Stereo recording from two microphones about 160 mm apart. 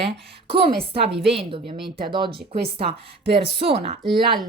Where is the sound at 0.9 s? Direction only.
90° right.